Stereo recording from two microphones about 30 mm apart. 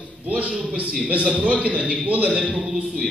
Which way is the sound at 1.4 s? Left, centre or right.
Right.